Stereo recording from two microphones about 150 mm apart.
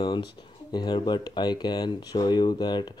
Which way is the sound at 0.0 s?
30° left (ahead or behind).